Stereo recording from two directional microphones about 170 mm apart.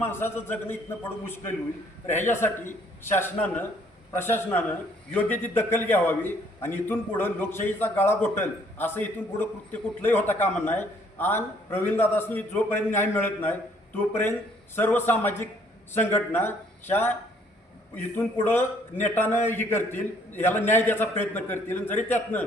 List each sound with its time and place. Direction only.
0.0 s a man's voice: 15° left (ahead or behind)